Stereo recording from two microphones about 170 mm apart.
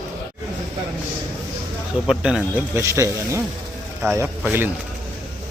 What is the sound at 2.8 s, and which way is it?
Speech, 15° right (ahead or behind).